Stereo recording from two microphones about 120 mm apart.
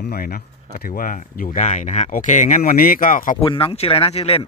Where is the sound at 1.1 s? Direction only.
90° left.